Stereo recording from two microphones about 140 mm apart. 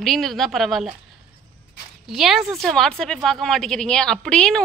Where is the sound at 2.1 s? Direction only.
Centre (ahead or behind).